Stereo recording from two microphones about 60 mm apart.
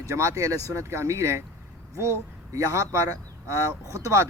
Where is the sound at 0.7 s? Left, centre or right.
Right.